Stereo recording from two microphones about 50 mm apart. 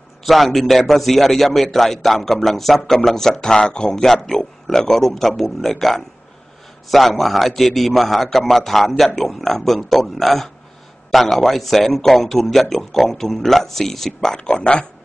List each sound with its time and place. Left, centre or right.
0.2 s a man's voice: centre